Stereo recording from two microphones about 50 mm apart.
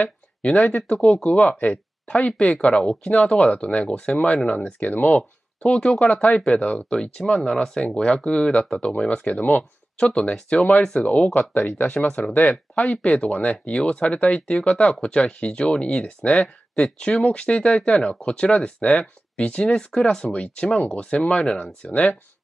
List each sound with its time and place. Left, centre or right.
0.6 s speech: left
0.9 s speech: centre
1.2 s speech: left
4.8 s speech: left
5.1 s speech: centre
6.9 s speech: centre
11.3 s speech: left
12.9 s speech: left
21.4 s speech: centre
21.8 s speech: left